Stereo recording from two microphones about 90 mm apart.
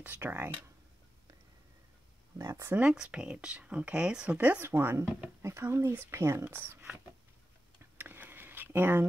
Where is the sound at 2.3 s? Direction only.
35° right (ahead or behind).